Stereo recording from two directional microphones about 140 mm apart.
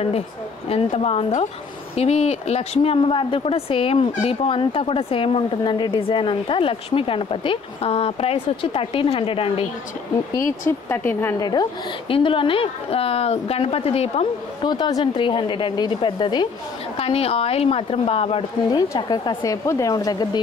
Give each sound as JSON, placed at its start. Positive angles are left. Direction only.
{"t": 0.7, "sound": "a woman's voice", "side_deg": 45}
{"t": 10.3, "sound": "speech", "side_deg": 20}
{"t": 12.1, "sound": "a woman's voice", "side_deg": 40}
{"t": 14.6, "sound": "speech", "side_deg": 30}
{"t": 17.0, "sound": "a woman's voice", "side_deg": 45}
{"t": 18.7, "sound": "speech", "side_deg": 30}